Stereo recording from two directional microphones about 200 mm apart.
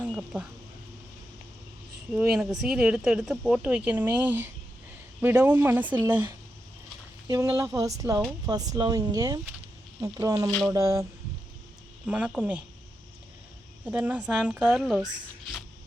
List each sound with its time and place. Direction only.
0.1 s speech: centre (ahead or behind)
2.1 s speech: 5° right (ahead or behind)
12.0 s speech: 5° right (ahead or behind)
13.8 s speech: 10° right (ahead or behind)